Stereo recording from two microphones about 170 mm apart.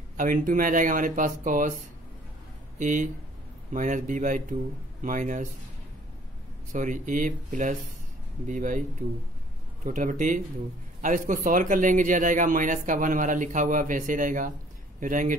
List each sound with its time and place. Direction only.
0.2 s a man's voice: 50° right (ahead or behind)
2.8 s a man's voice: 50° right (ahead or behind)
6.7 s a man's voice: 50° right (ahead or behind)
9.8 s a man's voice: 50° right (ahead or behind)